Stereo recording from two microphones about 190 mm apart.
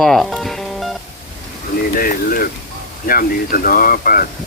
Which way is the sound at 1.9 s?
50° left (ahead or behind).